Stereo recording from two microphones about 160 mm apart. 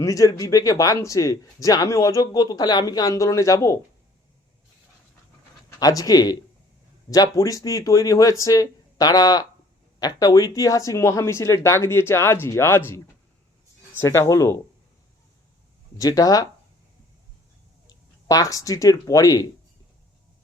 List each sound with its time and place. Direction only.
0.0 s speech: 20° left (ahead or behind)
5.8 s speech: 25° left (ahead or behind)
14.0 s speech: 15° left (ahead or behind)
16.0 s speech: 25° left (ahead or behind)
17.8 s speech: 20° left (ahead or behind)